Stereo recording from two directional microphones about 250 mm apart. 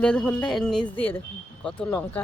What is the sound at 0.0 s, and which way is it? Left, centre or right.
Speech, centre.